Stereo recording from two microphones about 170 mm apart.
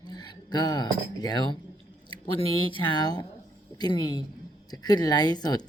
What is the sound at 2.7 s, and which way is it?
Speech, 25° left (ahead or behind).